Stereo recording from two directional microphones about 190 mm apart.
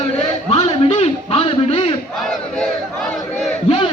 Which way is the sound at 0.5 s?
30° left (ahead or behind).